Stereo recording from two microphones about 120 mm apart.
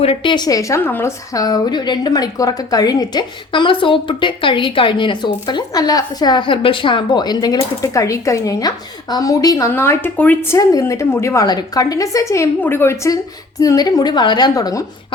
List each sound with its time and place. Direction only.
0.0 s speech: 50° left (ahead or behind); by 1.1 s 20° left (ahead or behind)
1.3 s speech: 30° left (ahead or behind)